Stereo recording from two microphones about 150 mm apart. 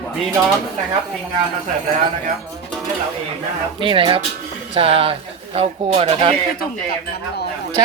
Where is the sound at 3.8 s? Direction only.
35° right (ahead or behind).